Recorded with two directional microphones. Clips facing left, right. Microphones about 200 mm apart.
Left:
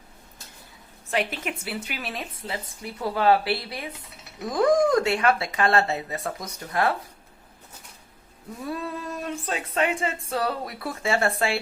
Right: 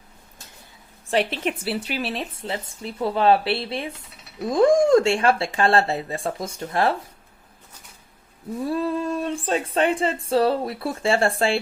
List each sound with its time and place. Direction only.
1.1 s speech: 30° right (ahead or behind)
8.6 s female singing: 30° right (ahead or behind)